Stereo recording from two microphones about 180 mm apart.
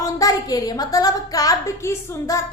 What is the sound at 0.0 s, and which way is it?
A woman's voice, 20° left (ahead or behind).